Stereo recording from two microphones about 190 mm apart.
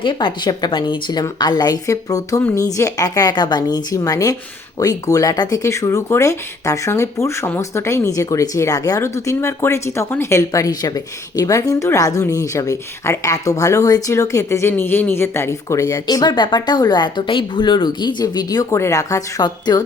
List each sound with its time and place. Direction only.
0.0 s a woman's voice: 25° left (ahead or behind)